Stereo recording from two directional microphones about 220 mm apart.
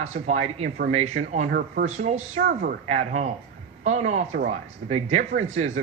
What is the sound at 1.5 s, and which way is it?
Speech, 45° right (ahead or behind).